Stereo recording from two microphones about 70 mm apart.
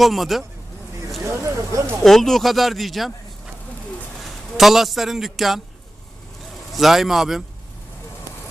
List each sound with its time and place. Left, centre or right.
0.0 s speech: centre
1.2 s speech: right
2.0 s speech: centre
4.2 s a man's voice: centre
6.7 s speech: centre